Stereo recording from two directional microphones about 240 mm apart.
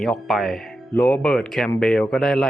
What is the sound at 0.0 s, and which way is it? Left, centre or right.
Speech, centre.